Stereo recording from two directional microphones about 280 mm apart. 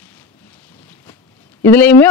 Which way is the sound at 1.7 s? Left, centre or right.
Centre.